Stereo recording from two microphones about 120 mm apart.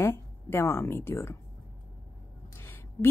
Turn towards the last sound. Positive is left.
turn(degrees=20)  # may be behind; listen again after turning